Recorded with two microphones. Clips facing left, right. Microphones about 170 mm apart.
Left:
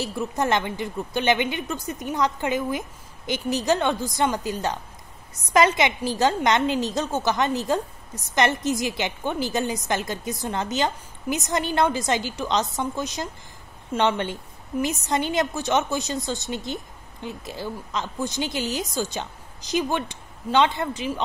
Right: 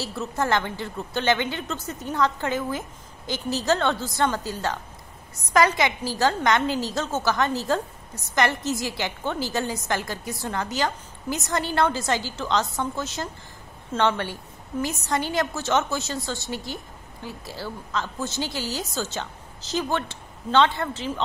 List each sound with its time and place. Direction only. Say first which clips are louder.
0.0 s a woman's voice: left 2 dB; 15° left (ahead or behind)